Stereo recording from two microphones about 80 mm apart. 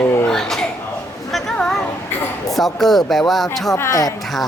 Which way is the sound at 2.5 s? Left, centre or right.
Centre.